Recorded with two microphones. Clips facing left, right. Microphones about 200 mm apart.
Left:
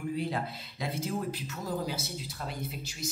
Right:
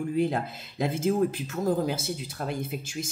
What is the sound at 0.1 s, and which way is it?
Speech, 50° right (ahead or behind).